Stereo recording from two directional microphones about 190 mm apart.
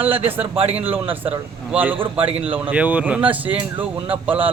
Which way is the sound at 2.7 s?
5° right (ahead or behind).